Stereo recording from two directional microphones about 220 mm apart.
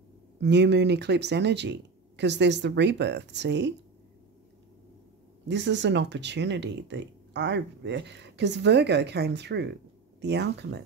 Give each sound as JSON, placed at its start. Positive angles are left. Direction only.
{"t": 0.4, "sound": "speech", "side_deg": -50}
{"t": 5.5, "sound": "speech", "side_deg": -55}